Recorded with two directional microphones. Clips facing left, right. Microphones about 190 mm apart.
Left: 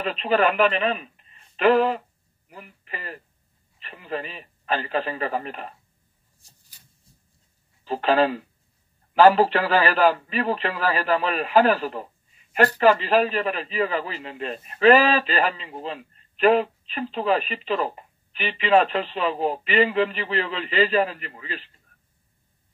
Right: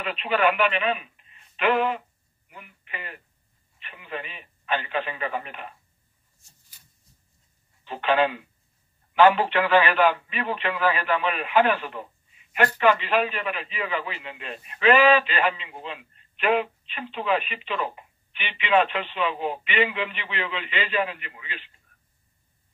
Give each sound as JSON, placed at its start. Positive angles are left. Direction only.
{"t": 0.0, "sound": "a man's voice", "side_deg": 35}
{"t": 7.8, "sound": "a man's voice", "side_deg": 35}